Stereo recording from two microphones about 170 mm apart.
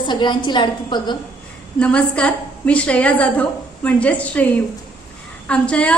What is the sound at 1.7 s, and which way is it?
A woman's voice, 5° left (ahead or behind).